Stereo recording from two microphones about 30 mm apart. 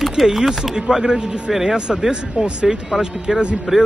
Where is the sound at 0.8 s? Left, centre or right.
Right.